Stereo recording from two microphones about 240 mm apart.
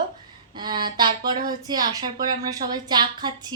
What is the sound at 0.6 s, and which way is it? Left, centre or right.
A woman's voice, centre.